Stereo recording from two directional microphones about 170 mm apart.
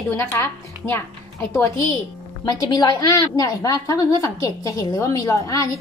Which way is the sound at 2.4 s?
25° left (ahead or behind).